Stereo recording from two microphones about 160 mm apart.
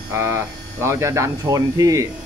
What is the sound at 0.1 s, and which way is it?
Speech, 15° right (ahead or behind).